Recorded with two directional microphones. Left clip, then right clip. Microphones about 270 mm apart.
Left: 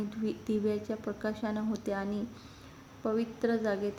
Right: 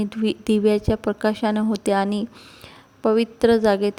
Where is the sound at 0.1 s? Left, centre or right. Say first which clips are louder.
Right 13 dB; right.